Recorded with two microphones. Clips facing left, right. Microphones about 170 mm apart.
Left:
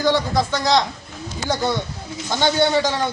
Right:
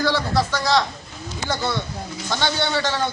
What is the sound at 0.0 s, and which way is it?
Speech, 15° left (ahead or behind).